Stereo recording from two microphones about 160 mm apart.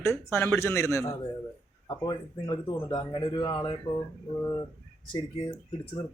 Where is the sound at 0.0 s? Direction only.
15° left (ahead or behind).